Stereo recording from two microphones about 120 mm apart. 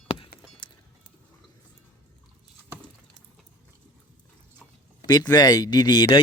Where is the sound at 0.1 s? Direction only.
45° left (ahead or behind).